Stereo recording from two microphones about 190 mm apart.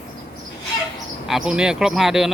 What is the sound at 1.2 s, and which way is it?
Speech, 5° right (ahead or behind).